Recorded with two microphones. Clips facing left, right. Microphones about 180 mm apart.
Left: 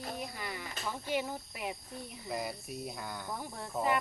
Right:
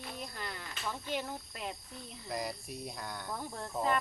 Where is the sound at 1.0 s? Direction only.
10° left (ahead or behind).